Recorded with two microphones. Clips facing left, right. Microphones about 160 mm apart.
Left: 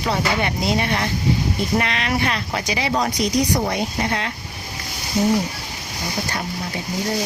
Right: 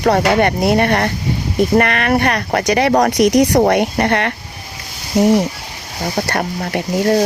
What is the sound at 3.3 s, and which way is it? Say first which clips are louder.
Speech: right 8 dB; 85° right.